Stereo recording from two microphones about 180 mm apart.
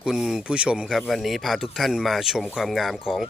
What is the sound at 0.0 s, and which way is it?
Speech, 5° right (ahead or behind).